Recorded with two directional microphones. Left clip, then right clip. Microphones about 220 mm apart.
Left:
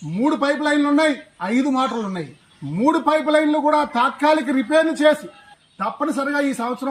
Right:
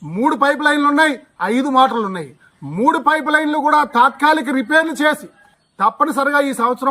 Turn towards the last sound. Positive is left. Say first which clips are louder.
# right 6 dB
turn(degrees=-20)  # may be behind; listen again after turning